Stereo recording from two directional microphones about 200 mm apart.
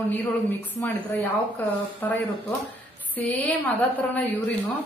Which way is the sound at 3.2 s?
10° left (ahead or behind).